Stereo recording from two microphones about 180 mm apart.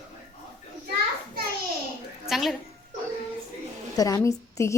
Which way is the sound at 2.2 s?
Centre (ahead or behind).